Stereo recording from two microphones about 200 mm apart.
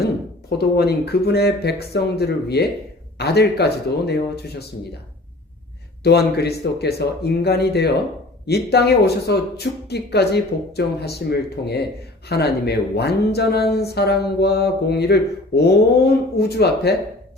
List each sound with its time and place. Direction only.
0.6 s speech: 55° left (ahead or behind)
6.0 s speech: 55° left (ahead or behind)